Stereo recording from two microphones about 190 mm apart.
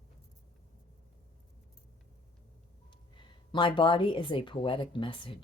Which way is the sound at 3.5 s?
25° left (ahead or behind).